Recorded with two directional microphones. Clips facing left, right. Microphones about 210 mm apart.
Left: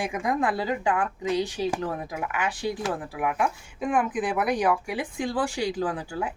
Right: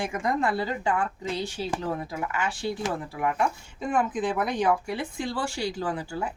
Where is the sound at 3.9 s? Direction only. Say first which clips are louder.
Even; 15° left (ahead or behind).